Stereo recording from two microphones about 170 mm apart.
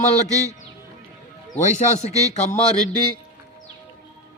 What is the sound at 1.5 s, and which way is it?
Speech, 45° left (ahead or behind).